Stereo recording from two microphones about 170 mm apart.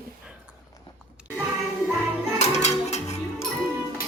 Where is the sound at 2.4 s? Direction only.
40° left (ahead or behind).